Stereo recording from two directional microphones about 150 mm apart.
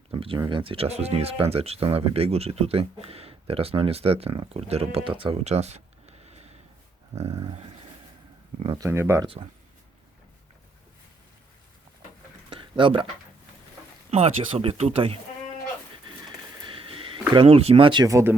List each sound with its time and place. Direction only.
0.1 s speech: 35° right (ahead or behind)
7.2 s a sound: 45° right (ahead or behind)
8.7 s speech: 20° right (ahead or behind)
12.5 s a sound: 35° right (ahead or behind)
14.1 s speech: 40° right (ahead or behind)
16.6 s speech: 35° right (ahead or behind); by 18.3 s 20° right (ahead or behind)